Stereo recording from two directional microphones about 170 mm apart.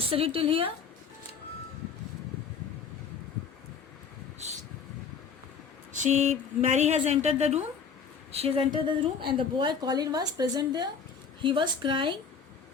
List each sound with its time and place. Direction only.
0.1 s a woman's voice: 35° right (ahead or behind)
6.0 s a woman's voice: 45° right (ahead or behind)